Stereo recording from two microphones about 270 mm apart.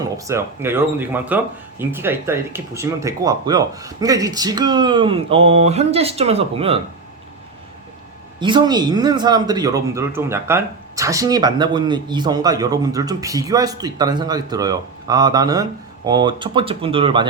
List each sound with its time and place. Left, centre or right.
0.0 s speech: centre
8.4 s speech: centre